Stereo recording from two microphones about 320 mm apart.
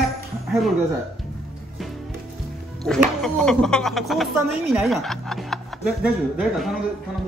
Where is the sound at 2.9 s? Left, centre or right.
Centre.